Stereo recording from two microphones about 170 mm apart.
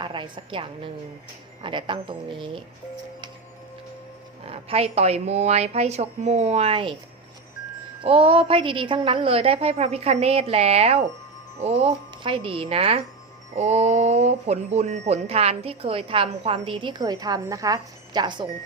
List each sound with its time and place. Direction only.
0.0 s speech: 30° right (ahead or behind)
4.4 s speech: 35° right (ahead or behind)
8.0 s speech: 35° right (ahead or behind)